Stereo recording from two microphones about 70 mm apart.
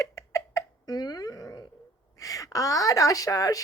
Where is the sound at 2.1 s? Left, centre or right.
Left.